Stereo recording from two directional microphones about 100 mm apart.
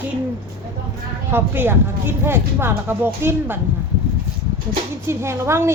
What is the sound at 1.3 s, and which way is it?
Speech, 20° right (ahead or behind).